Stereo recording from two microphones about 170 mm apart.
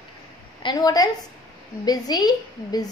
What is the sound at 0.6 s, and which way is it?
A woman's voice, 25° left (ahead or behind).